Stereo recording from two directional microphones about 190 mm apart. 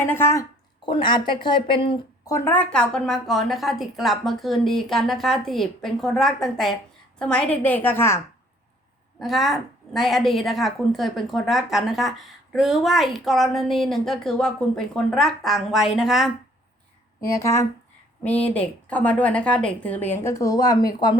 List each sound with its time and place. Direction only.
0.0 s a woman's voice: 10° left (ahead or behind)
0.9 s speech: 25° left (ahead or behind)
2.3 s a woman's voice: 10° left (ahead or behind)
9.1 s a woman's voice: centre (ahead or behind)
17.2 s a woman's voice: 15° left (ahead or behind)